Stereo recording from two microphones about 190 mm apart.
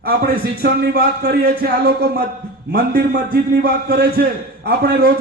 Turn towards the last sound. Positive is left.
turn(degrees=-55)  # may be behind; listen again after turning